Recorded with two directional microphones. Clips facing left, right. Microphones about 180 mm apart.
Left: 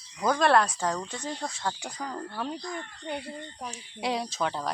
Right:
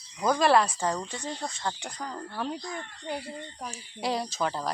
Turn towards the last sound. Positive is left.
turn(degrees=0)  # may be behind; listen again after turning